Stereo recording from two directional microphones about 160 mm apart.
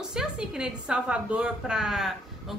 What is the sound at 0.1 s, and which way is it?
A woman's voice, 5° right (ahead or behind).